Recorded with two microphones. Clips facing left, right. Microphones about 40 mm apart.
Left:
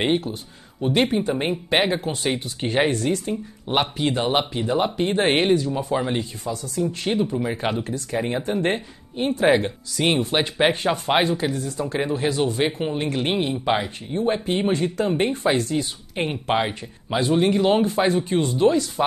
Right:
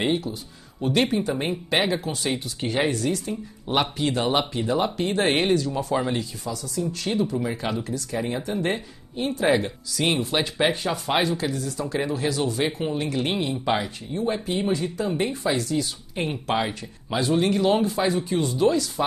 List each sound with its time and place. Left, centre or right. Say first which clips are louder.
0.0 s speech: left 2 dB; left
0.7 s speech: left 2 dB; centre
1.7 s speech: left 2 dB; left
3.6 s speech: left 1 dB; left
6.1 s speech: left 2 dB; left
14.1 s speech: left 3 dB; left
17.8 s speech: left 3 dB; left